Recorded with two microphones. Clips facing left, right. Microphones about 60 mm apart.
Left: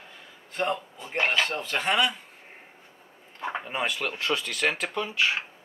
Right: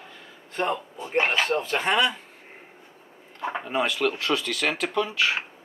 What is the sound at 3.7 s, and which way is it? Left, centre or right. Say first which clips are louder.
Speech: right 7 dB; left.